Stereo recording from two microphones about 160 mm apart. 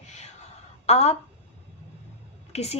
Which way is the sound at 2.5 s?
40° left (ahead or behind).